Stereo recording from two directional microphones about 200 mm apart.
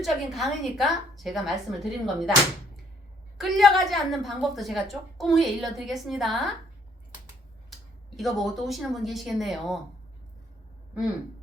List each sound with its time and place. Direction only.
0.0 s a woman's voice: centre (ahead or behind)
3.3 s a woman's voice: centre (ahead or behind)
7.7 s speech: centre (ahead or behind)